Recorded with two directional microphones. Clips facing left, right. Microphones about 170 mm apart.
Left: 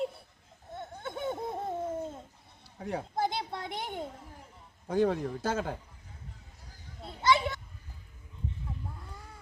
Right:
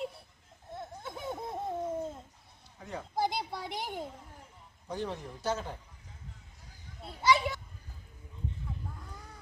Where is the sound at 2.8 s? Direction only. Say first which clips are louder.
Left 6 dB; 60° left (ahead or behind).